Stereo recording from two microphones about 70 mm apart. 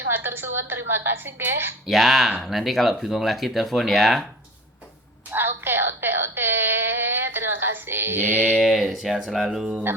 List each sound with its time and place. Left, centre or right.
0.1 s a woman's voice: right
1.9 s speech: centre
5.3 s speech: right
8.5 s speech: centre